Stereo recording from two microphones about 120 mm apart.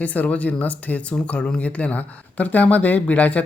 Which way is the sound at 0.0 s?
10° left (ahead or behind).